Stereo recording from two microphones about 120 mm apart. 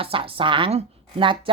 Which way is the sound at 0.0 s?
50° right (ahead or behind).